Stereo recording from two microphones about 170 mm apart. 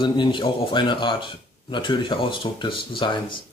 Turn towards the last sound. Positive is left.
turn(degrees=30)  # may be behind; listen again after turning